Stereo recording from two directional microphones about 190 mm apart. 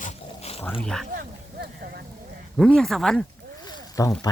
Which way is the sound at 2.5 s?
Centre (ahead or behind).